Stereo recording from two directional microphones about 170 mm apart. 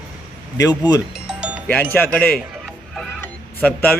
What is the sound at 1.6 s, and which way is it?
Speech, 10° left (ahead or behind).